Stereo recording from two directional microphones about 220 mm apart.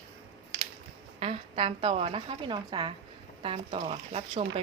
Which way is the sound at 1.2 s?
25° right (ahead or behind).